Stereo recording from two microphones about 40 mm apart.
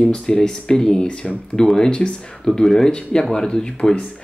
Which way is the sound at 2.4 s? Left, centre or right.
Centre.